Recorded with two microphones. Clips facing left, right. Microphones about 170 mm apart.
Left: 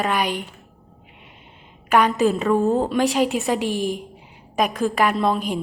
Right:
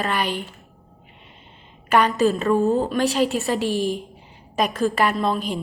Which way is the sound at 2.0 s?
15° left (ahead or behind).